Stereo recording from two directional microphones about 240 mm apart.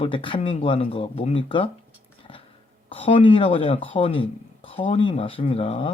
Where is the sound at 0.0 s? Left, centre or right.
Left.